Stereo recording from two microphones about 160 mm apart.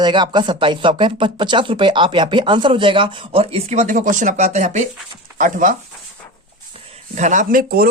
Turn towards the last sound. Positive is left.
turn(degrees=-65)  # may be behind; listen again after turning